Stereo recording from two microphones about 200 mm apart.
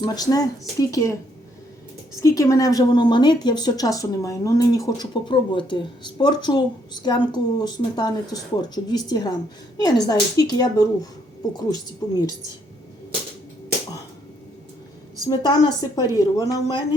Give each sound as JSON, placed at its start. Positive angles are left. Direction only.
{"t": 0.0, "sound": "a woman's voice", "side_deg": 20}
{"t": 2.2, "sound": "a woman's voice", "side_deg": 15}
{"t": 15.3, "sound": "a woman's voice", "side_deg": 20}